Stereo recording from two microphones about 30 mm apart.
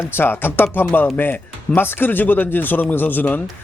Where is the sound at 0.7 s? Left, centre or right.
Left.